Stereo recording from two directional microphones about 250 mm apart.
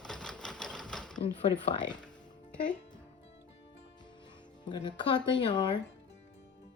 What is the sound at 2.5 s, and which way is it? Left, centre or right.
Speech, centre.